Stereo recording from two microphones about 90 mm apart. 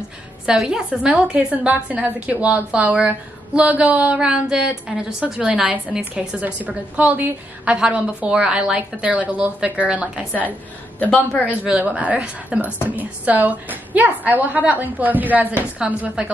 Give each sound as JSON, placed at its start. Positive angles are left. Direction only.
{"t": 0.5, "sound": "a woman's voice", "side_deg": -5}
{"t": 11.0, "sound": "a woman's voice", "side_deg": 15}
{"t": 11.4, "sound": "a woman's voice", "side_deg": -15}